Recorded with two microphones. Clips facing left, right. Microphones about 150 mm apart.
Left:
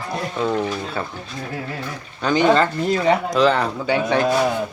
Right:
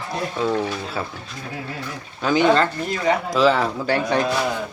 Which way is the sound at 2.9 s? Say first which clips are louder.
Left 3 dB; 30° left (ahead or behind).